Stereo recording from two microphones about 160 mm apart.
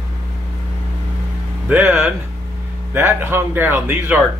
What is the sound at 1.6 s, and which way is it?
Speech, 10° right (ahead or behind).